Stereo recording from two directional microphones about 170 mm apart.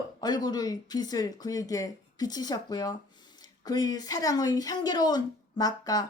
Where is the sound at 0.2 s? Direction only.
25° left (ahead or behind).